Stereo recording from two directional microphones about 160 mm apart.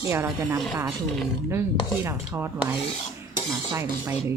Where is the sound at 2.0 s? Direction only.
15° right (ahead or behind).